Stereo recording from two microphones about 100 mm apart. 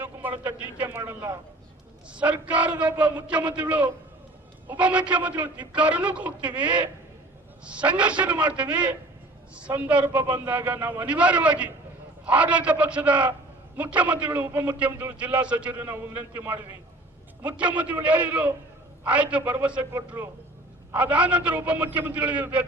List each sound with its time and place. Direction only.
0.0 s a sound: 20° right (ahead or behind)
0.8 s a man's voice: 20° right (ahead or behind)
19.8 s a man's voice: 30° right (ahead or behind)